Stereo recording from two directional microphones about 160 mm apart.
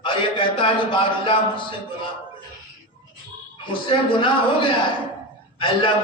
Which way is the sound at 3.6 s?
30° left (ahead or behind).